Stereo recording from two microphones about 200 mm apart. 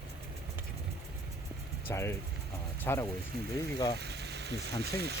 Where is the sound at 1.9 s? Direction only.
15° left (ahead or behind).